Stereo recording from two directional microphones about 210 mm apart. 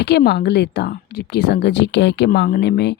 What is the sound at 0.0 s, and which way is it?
Speech, 55° left (ahead or behind).